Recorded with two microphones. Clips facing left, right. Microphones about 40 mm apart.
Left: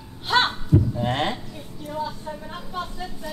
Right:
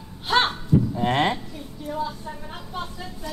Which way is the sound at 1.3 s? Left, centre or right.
Centre.